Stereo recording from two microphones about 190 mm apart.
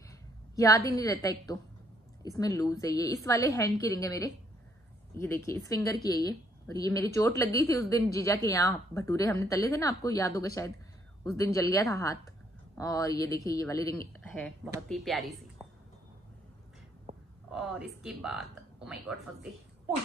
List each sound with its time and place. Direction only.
0.6 s a woman's voice: 20° left (ahead or behind)
14.9 s speech: centre (ahead or behind)
17.5 s a woman's voice: 5° right (ahead or behind)